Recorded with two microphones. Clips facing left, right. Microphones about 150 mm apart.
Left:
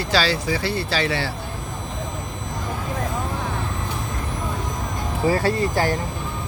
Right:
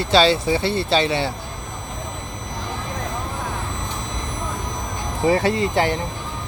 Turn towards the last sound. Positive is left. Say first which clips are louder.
# right 1 dB
turn(degrees=-20)  # may be behind; listen again after turning